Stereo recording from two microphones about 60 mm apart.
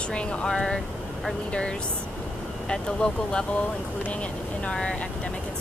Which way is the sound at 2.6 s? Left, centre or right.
Centre.